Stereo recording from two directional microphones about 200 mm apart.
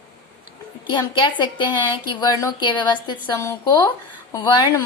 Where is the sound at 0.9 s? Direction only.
25° left (ahead or behind).